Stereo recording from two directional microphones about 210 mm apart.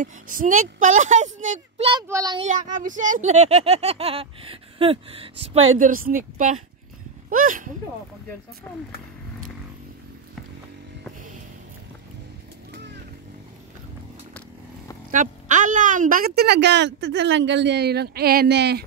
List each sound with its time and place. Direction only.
0.0 s speech: 40° right (ahead or behind)
1.9 s speech: 15° right (ahead or behind)
2.4 s speech: 35° right (ahead or behind)
5.8 s speech: 40° right (ahead or behind)
8.6 s speech: 5° left (ahead or behind)
12.7 s vehicle: 55° right (ahead or behind)
15.0 s a woman's voice: 35° right (ahead or behind)